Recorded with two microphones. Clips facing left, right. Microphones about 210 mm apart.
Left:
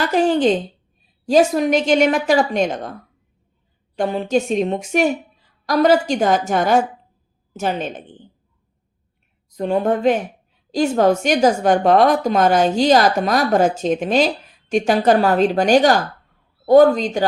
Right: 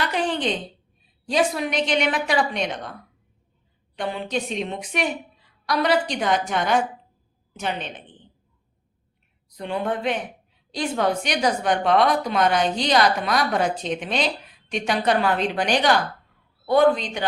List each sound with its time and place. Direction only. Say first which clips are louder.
0.0 s a woman's voice: left 9 dB; 45° left (ahead or behind)
3.9 s a woman's voice: left 8 dB; 45° left (ahead or behind)
9.6 s a woman's voice: left 8 dB; 40° left (ahead or behind)